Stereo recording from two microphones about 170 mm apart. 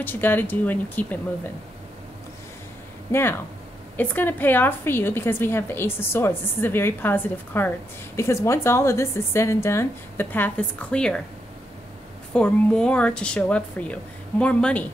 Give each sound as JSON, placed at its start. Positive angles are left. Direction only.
{"t": 0.0, "sound": "a woman's voice", "side_deg": 10}
{"t": 3.1, "sound": "a woman's voice", "side_deg": 15}
{"t": 12.4, "sound": "a woman's voice", "side_deg": 5}